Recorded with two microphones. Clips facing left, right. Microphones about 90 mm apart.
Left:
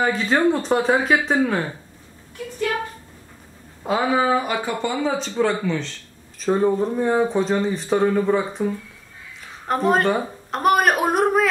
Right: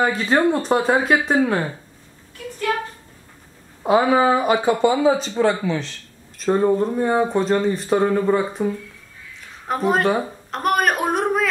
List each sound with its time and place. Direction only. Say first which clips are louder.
0.0 s speech: right 1 dB; centre (ahead or behind)
3.8 s speech: right 4 dB; 15° right (ahead or behind)
5.0 s speech: right 4 dB; 5° right (ahead or behind)
9.4 s a sound: left 1 dB; centre (ahead or behind)